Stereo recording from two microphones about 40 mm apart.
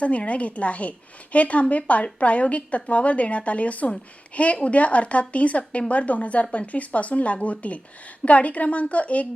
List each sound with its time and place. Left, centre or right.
0.0 s a woman's voice: left